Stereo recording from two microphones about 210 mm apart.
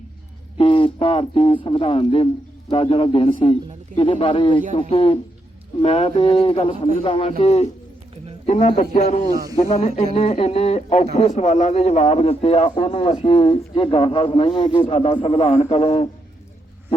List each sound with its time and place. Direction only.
0.5 s a man's voice: 25° left (ahead or behind)
9.3 s speech: 15° right (ahead or behind)
9.6 s a man's voice: 30° left (ahead or behind)